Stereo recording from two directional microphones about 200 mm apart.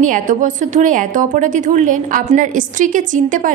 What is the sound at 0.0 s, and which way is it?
A woman's voice, 40° right (ahead or behind).